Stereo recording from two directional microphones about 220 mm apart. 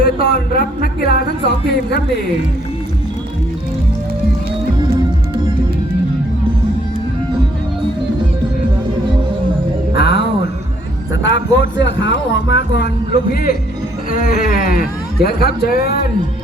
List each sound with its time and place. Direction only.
0.0 s speech: 45° left (ahead or behind)
10.0 s music: 50° left (ahead or behind)
11.1 s speech: 55° left (ahead or behind)
13.3 s speech: 45° left (ahead or behind)